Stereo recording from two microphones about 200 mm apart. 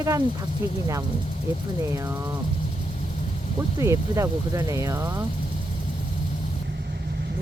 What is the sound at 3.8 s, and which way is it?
Speech, 15° right (ahead or behind).